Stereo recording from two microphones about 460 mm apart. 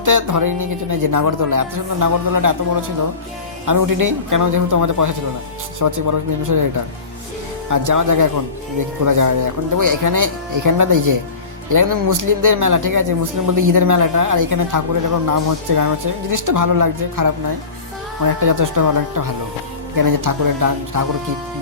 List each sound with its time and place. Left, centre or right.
0.0 s speech: right
7.7 s speech: right